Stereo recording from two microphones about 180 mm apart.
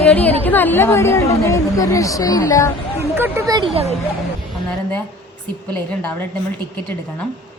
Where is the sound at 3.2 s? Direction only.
15° right (ahead or behind).